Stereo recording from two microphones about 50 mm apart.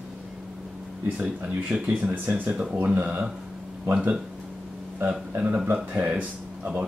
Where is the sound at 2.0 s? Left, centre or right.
Right.